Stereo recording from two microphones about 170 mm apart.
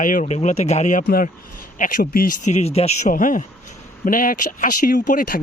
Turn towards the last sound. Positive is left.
turn(degrees=55)  # may be behind; listen again after turning